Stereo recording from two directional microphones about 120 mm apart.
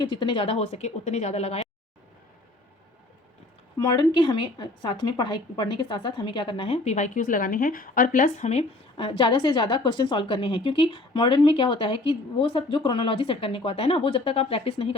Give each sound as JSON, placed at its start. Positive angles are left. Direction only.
{"t": 0.0, "sound": "a woman's voice", "side_deg": 40}
{"t": 3.8, "sound": "a woman's voice", "side_deg": 35}
{"t": 8.2, "sound": "speech", "side_deg": 80}
{"t": 9.0, "sound": "a woman's voice", "side_deg": 45}